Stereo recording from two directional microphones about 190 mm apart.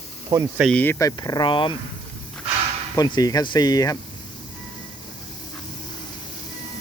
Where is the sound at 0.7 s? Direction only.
10° left (ahead or behind); by 1.7 s 25° left (ahead or behind).